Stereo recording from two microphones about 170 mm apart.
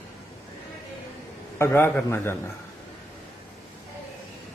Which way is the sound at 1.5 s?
15° left (ahead or behind).